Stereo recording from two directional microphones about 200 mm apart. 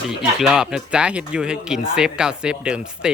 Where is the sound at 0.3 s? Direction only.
5° right (ahead or behind).